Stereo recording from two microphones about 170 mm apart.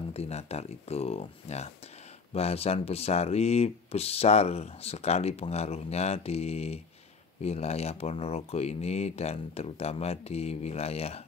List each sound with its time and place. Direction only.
0.1 s speech: 40° left (ahead or behind)